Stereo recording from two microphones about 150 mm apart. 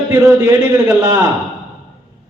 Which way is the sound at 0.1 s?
20° right (ahead or behind).